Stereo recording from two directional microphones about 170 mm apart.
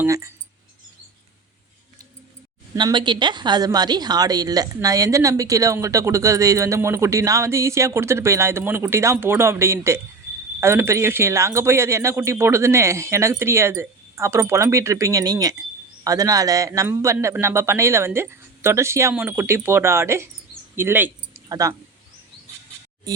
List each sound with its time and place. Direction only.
0.0 s speech: 20° right (ahead or behind)
2.7 s a woman's voice: 25° right (ahead or behind)
20.7 s a sound: 10° right (ahead or behind)
21.5 s speech: 20° right (ahead or behind)